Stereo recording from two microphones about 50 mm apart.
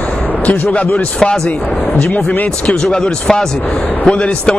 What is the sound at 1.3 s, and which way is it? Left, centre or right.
Speech, centre.